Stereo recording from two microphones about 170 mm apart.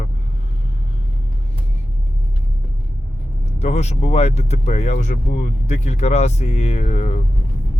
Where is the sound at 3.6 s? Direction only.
40° left (ahead or behind).